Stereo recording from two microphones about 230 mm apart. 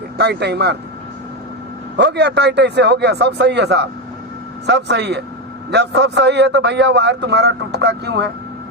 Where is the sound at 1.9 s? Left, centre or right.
Right.